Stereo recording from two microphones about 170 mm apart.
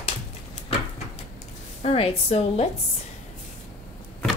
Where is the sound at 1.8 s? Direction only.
35° left (ahead or behind).